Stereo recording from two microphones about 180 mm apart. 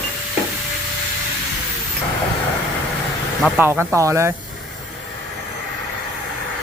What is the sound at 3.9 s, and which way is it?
Speech, 15° right (ahead or behind).